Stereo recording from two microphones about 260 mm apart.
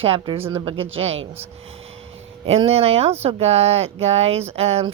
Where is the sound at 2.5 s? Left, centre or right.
Right.